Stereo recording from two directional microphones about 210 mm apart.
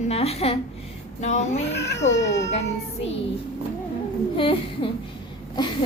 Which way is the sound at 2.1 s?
55° left (ahead or behind).